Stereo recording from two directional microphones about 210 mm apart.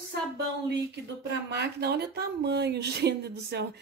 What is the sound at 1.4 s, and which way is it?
Speech, 50° right (ahead or behind).